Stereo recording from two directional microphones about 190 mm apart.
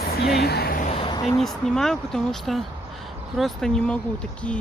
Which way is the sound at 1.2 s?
Centre (ahead or behind).